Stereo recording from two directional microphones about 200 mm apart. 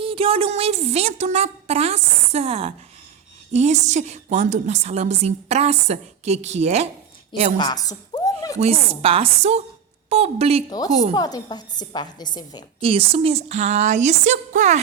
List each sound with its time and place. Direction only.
0.0 s a woman's voice: 25° right (ahead or behind)
7.6 s a sound: 20° left (ahead or behind)
8.5 s a woman's voice: 30° right (ahead or behind)
10.7 s a woman's voice: 20° left (ahead or behind)
12.8 s a woman's voice: 25° right (ahead or behind)